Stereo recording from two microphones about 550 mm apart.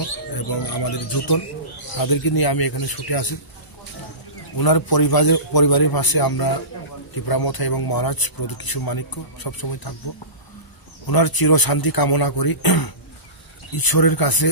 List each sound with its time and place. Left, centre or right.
0.4 s speech: left
4.6 s speech: left
11.1 s speech: left